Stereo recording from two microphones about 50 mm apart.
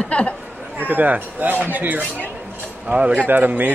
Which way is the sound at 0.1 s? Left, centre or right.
Left.